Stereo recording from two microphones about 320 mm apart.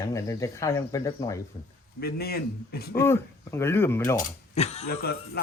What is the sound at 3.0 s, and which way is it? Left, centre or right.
Speech, centre.